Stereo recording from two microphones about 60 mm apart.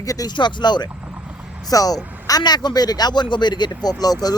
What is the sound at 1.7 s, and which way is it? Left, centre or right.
Speech, left.